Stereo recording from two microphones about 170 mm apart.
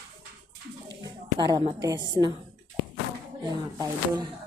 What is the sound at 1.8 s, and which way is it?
Speech, 25° right (ahead or behind).